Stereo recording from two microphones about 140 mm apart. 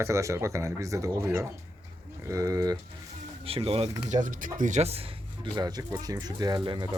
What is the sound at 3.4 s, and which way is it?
Speech, 45° right (ahead or behind).